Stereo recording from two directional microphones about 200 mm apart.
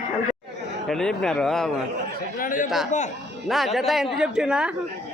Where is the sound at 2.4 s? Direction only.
45° left (ahead or behind).